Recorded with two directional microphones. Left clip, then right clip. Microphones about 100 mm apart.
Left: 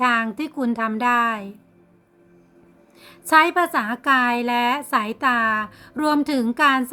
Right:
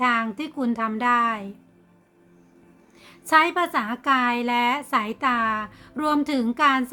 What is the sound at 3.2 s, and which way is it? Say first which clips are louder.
A woman's voice: left 3 dB; 35° left (ahead or behind).